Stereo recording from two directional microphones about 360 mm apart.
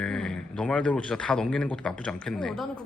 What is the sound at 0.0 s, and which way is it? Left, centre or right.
Speech, centre.